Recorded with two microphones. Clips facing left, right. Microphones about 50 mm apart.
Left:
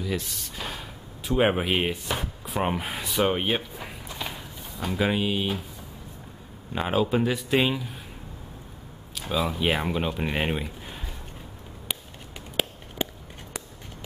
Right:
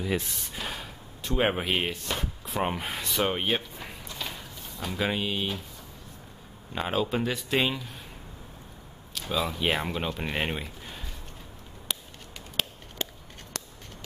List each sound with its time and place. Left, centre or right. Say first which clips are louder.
0.0 s speech: right 1 dB; right
0.6 s chop: left 1 dB; centre
2.4 s speech: left 2 dB; centre
4.1 s a sound: left 2 dB; centre
6.7 s speech: left 4 dB; centre
9.1 s speech: left 2 dB; centre
11.9 s a sound: left 1 dB; centre